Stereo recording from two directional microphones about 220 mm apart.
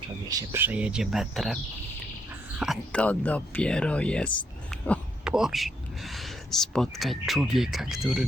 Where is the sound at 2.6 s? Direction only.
Centre (ahead or behind).